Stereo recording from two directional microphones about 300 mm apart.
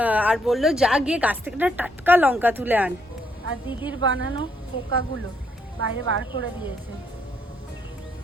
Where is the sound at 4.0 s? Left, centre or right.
Right.